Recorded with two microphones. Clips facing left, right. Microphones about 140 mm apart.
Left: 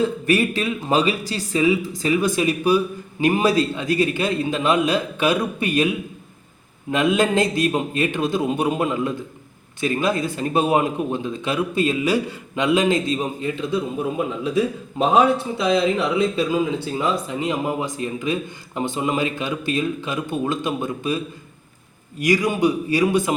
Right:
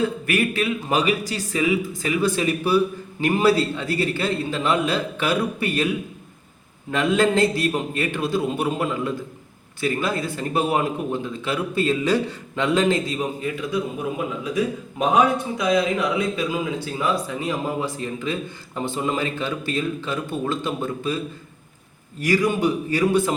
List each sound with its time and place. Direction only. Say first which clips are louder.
0.0 s speech: left 3 dB; 30° left (ahead or behind)
6.9 s a man's voice: left 1 dB; 15° left (ahead or behind)
22.2 s speech: left 1 dB; 15° left (ahead or behind)